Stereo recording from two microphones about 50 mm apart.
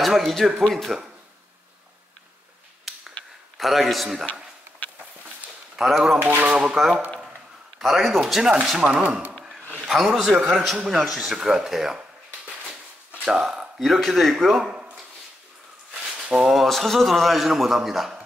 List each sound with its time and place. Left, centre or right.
0.0 s a man's voice: centre
2.9 s a sound: centre
3.5 s a man's voice: centre
5.8 s speech: centre
7.8 s a man's voice: centre
9.8 s a man's voice: centre
13.2 s speech: centre
13.7 s a man's voice: centre
16.0 s a sound: centre
16.6 s a man's voice: centre